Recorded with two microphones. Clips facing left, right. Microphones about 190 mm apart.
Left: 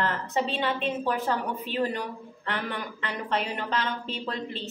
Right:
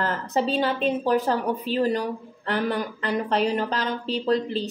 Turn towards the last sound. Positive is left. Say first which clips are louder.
# right 10 dB
turn(degrees=-40)  # may be behind; listen again after turning